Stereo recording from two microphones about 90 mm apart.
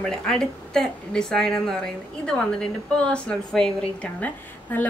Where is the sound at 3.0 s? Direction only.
10° left (ahead or behind).